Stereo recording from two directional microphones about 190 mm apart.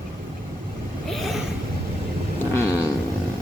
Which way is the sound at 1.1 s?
Centre (ahead or behind).